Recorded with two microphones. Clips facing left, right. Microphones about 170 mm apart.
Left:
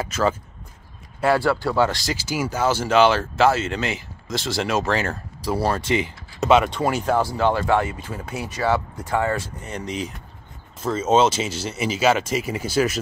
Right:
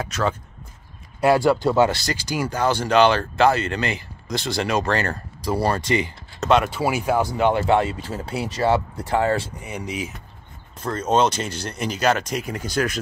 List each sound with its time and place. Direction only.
0.0 s speech: centre (ahead or behind)
1.2 s speech: 15° right (ahead or behind)
1.9 s speech: centre (ahead or behind); by 9.5 s 25° right (ahead or behind)
9.6 s speech: 10° right (ahead or behind)
10.8 s speech: 5° left (ahead or behind)